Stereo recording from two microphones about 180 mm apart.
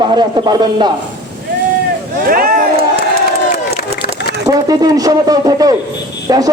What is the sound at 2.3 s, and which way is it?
Speech, 55° right (ahead or behind).